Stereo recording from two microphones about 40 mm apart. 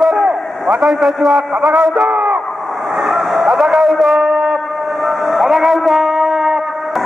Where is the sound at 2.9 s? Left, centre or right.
Centre.